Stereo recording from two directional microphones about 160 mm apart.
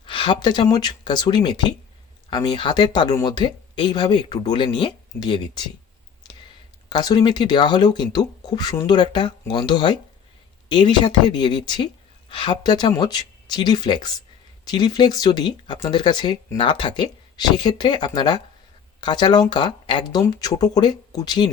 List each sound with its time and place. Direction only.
0.0 s speech: 30° left (ahead or behind)
6.9 s speech: 25° left (ahead or behind)